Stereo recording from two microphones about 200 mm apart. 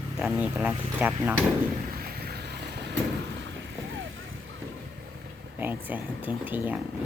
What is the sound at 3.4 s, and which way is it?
Vehicle, 65° right (ahead or behind).